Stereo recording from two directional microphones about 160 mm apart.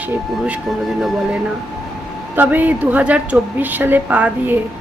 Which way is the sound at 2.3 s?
10° right (ahead or behind).